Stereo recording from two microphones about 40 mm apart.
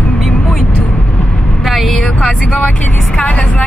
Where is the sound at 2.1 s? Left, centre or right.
Left.